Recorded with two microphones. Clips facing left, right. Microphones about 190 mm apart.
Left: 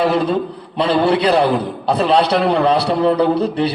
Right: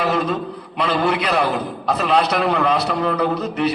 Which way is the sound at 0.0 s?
30° left (ahead or behind).